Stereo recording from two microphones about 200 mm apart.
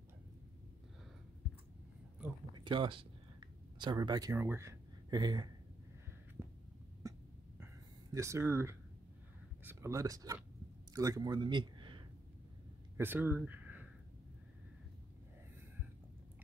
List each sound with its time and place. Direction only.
2.5 s a sound: 25° right (ahead or behind)
9.7 s a man's voice: 15° right (ahead or behind)
12.9 s speech: 10° right (ahead or behind)